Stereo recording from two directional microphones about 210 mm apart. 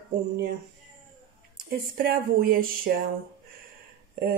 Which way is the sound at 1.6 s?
45° right (ahead or behind).